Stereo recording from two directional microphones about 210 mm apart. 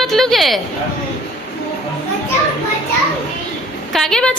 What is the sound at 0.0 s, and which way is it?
Speech, centre (ahead or behind).